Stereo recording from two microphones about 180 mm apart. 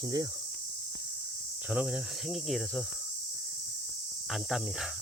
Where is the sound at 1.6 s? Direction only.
5° right (ahead or behind).